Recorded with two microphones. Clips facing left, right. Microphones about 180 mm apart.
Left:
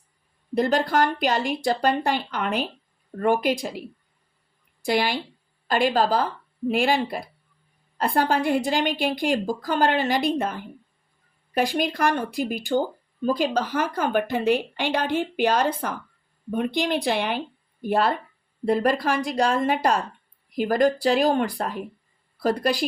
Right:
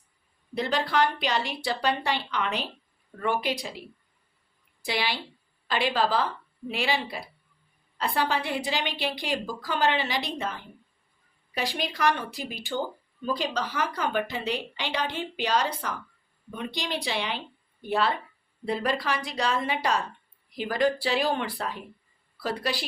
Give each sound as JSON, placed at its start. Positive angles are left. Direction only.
{"t": 0.5, "sound": "a woman's voice", "side_deg": 50}